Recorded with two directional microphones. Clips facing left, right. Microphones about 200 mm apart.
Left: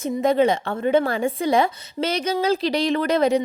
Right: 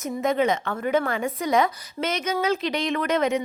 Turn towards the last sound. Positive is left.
turn(degrees=35)  # may be behind; listen again after turning